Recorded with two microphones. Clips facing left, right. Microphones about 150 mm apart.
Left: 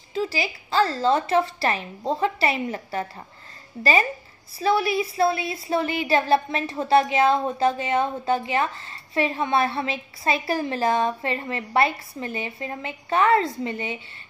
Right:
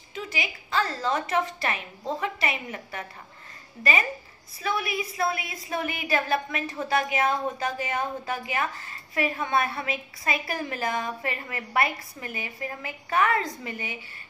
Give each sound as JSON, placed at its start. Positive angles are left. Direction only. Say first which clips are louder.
{"t": 0.1, "sound": "a woman's voice", "louder": "left 7 dB", "side_deg": 30}
{"t": 4.6, "sound": "a woman's voice", "louder": "left 8 dB", "side_deg": 30}